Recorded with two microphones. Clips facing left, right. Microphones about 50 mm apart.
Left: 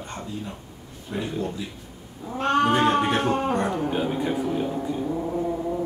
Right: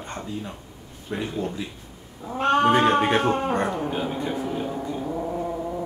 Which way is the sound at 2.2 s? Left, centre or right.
Centre.